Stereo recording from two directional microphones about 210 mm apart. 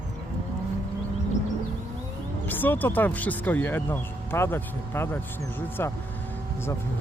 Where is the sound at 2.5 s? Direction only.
10° left (ahead or behind).